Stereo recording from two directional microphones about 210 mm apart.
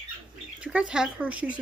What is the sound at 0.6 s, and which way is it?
Speech, 5° right (ahead or behind).